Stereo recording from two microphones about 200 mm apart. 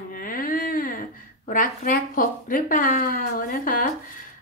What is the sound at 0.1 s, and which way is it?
A woman's voice, 45° left (ahead or behind).